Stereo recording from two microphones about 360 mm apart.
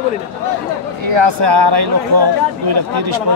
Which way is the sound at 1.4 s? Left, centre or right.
Right.